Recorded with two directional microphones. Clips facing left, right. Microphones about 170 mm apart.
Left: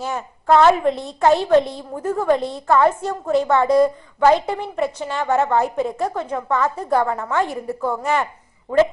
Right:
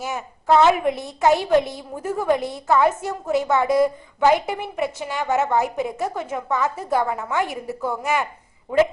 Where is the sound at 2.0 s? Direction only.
15° right (ahead or behind).